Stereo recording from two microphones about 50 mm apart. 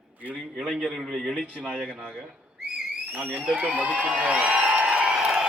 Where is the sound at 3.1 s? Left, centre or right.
Right.